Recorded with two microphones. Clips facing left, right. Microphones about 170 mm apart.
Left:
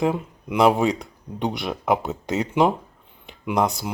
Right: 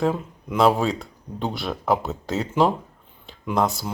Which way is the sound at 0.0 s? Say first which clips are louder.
Left 1 dB; 15° left (ahead or behind).